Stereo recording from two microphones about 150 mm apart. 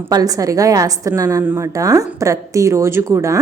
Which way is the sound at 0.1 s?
25° right (ahead or behind).